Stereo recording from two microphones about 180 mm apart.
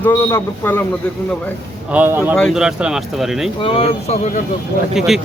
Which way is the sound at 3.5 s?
30° left (ahead or behind).